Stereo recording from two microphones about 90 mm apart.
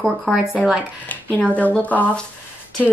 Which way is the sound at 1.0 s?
15° left (ahead or behind).